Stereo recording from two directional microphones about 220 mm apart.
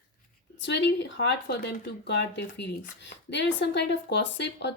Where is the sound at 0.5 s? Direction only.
50° left (ahead or behind).